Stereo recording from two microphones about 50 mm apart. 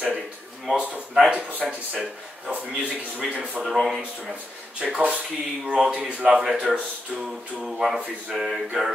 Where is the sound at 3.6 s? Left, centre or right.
Centre.